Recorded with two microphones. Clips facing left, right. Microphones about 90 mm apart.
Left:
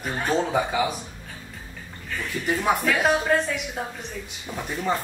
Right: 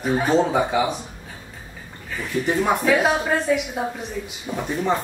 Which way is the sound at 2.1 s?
5° right (ahead or behind).